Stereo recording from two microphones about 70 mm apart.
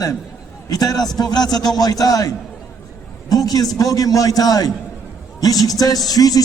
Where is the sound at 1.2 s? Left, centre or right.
Left.